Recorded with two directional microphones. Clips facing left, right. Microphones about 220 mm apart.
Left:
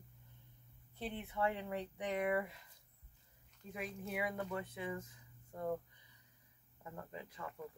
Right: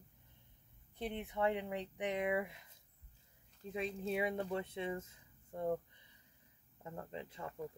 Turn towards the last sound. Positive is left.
turn(degrees=-25)  # may be behind; listen again after turning